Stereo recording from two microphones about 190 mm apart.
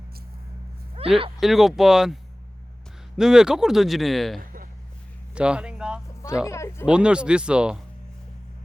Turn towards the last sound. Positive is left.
turn(degrees=-5)  # may be behind; listen again after turning